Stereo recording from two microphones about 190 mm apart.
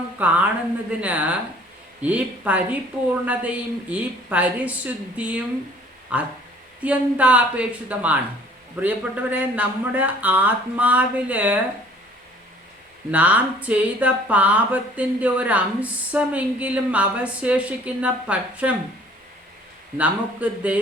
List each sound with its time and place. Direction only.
0.2 s speech: 5° right (ahead or behind)
13.1 s speech: 5° right (ahead or behind)
20.0 s speech: 5° right (ahead or behind)